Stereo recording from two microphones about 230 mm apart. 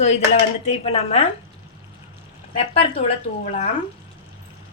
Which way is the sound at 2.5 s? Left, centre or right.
Left.